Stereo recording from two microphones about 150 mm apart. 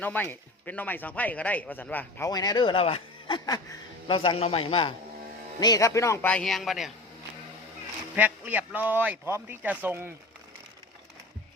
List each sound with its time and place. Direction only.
0.0 s speech: 15° left (ahead or behind)
2.3 s speech: 25° left (ahead or behind)
4.1 s a man's voice: 40° left (ahead or behind)
5.5 s speech: 25° left (ahead or behind); by 6.9 s centre (ahead or behind)
8.1 s speech: 10° right (ahead or behind)